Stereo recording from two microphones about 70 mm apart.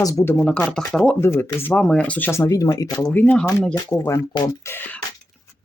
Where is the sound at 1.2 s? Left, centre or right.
Left.